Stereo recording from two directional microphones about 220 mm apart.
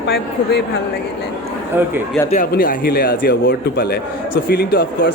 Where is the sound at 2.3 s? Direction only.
40° left (ahead or behind).